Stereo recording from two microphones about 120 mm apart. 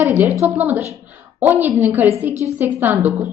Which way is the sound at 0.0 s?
15° right (ahead or behind).